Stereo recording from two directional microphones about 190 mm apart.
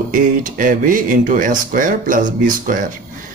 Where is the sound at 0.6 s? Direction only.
45° right (ahead or behind).